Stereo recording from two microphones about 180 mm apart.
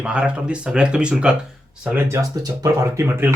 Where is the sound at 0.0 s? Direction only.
5° right (ahead or behind).